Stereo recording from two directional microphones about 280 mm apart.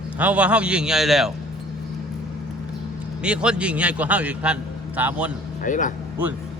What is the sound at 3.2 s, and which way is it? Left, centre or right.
A man's voice, centre.